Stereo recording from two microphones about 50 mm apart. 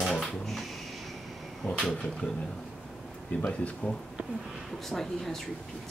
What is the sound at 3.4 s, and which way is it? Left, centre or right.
Speech, left.